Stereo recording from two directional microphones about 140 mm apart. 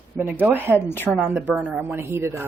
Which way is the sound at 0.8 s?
15° left (ahead or behind).